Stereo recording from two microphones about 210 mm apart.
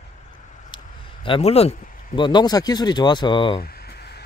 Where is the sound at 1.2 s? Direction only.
25° left (ahead or behind).